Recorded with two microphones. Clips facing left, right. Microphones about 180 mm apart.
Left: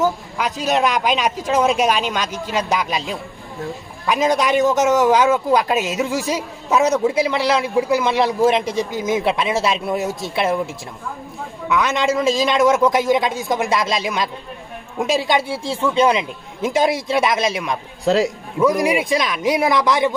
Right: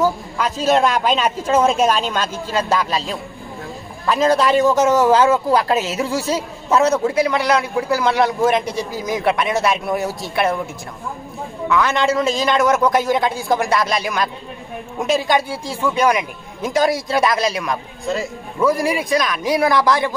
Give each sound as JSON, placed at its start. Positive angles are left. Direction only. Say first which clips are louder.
{"t": 0.0, "sound": "a man's voice", "louder": "right 1 dB", "side_deg": 15}
{"t": 11.7, "sound": "speech", "louder": "right 1 dB", "side_deg": 20}
{"t": 18.0, "sound": "speech", "louder": "left 7 dB", "side_deg": 85}
{"t": 18.6, "sound": "speech", "louder": "left 1 dB", "side_deg": 20}